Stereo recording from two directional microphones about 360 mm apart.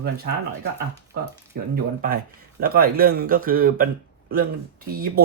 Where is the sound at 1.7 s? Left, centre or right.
Right.